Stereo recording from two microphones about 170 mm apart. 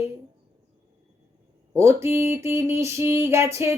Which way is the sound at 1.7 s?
15° right (ahead or behind).